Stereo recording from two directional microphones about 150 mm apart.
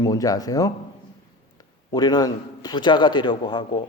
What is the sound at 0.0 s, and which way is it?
Speech, 25° left (ahead or behind).